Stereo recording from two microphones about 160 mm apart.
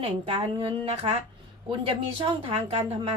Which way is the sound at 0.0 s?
35° right (ahead or behind).